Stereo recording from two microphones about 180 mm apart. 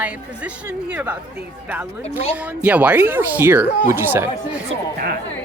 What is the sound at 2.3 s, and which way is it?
Speech, 10° right (ahead or behind).